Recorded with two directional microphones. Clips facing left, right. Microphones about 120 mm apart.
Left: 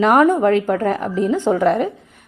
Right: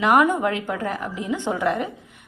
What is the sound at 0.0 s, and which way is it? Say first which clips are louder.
A woman's voice: left 5 dB; 40° left (ahead or behind).